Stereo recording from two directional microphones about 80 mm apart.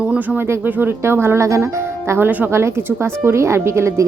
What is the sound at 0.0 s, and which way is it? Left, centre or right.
Speech, centre.